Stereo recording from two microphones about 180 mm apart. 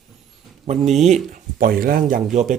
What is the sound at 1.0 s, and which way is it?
A man's voice, 45° right (ahead or behind).